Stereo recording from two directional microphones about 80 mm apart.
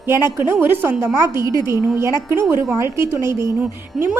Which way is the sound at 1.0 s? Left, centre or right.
Right.